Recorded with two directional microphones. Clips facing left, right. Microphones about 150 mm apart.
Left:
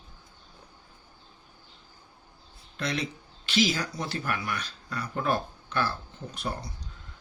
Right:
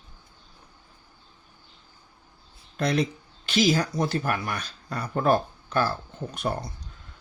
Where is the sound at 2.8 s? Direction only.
45° right (ahead or behind).